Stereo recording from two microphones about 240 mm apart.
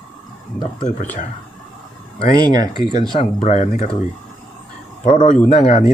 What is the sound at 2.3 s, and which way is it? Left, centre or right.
Speech, centre.